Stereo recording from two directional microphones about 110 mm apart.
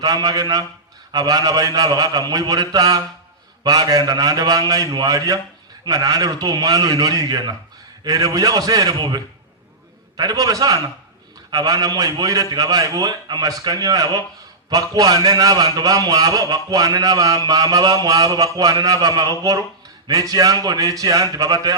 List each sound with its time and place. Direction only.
0.0 s a man's voice: 35° right (ahead or behind)